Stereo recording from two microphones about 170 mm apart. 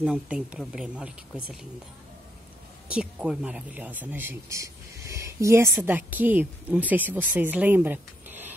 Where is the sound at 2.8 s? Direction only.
5° right (ahead or behind).